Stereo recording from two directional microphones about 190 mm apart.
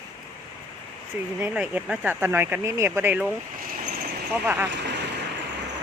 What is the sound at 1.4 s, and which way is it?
Speech, 5° right (ahead or behind).